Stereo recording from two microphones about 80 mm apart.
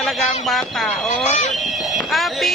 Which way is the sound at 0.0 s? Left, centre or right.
Centre.